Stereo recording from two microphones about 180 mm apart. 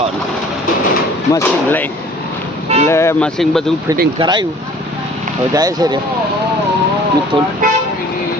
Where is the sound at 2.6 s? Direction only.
35° right (ahead or behind).